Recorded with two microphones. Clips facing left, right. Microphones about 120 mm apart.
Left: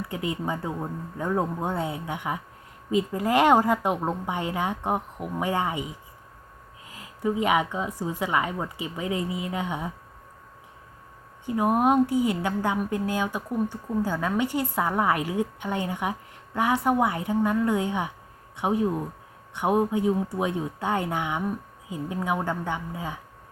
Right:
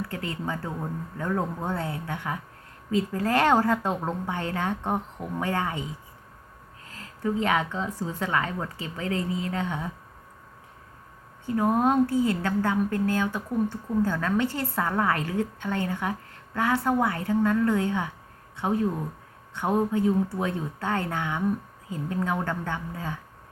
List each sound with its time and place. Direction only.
0.1 s a woman's voice: 15° left (ahead or behind)
11.4 s a woman's voice: 15° left (ahead or behind)